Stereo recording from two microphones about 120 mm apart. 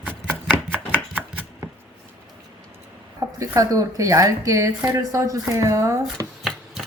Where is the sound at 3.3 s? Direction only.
30° right (ahead or behind).